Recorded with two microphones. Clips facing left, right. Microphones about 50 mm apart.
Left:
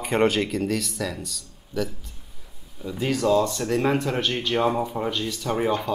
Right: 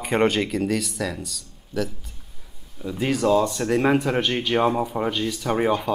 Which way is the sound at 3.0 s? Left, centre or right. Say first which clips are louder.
Right 1 dB; centre.